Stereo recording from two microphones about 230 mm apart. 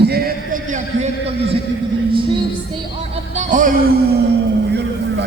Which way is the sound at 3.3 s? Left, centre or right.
Right.